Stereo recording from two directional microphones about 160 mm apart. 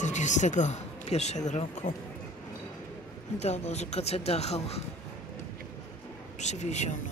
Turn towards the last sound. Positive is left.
turn(degrees=45)  # may be behind; listen again after turning